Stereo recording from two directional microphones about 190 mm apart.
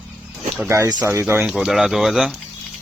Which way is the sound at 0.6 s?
15° right (ahead or behind).